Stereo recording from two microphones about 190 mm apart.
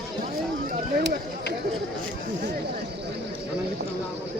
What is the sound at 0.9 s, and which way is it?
Run, 50° right (ahead or behind).